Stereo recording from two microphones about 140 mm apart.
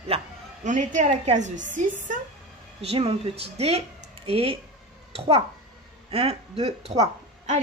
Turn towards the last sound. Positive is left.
turn(degrees=-55)  # may be behind; listen again after turning